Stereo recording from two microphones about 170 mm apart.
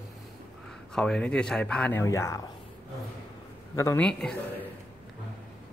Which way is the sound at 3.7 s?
15° left (ahead or behind).